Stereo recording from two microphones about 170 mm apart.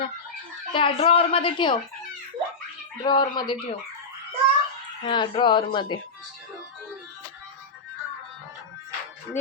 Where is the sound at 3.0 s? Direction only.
25° left (ahead or behind).